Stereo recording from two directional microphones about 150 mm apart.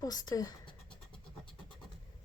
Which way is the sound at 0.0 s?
25° left (ahead or behind).